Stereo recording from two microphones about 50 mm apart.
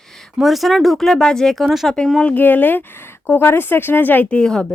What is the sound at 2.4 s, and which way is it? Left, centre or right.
Speech, left.